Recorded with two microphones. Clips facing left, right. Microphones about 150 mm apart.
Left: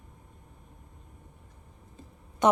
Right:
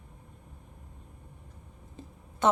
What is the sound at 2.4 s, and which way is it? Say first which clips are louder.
Speech: left 2 dB; 15° left (ahead or behind).